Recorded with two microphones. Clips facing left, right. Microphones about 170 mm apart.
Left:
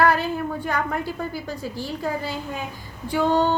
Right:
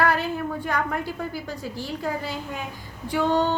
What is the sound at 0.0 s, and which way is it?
A woman's voice, 35° left (ahead or behind).